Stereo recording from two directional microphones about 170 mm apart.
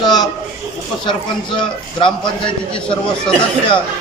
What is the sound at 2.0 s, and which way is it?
Speech, 30° left (ahead or behind).